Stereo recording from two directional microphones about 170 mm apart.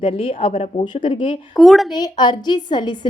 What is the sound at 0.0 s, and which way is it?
A woman's voice, 35° left (ahead or behind).